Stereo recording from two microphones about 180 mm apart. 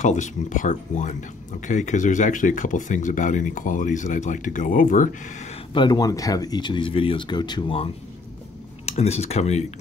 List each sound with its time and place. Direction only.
0.0 s speech: 45° left (ahead or behind)
5.7 s speech: 25° left (ahead or behind)